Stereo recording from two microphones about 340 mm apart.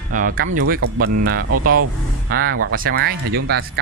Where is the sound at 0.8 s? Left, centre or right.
Right.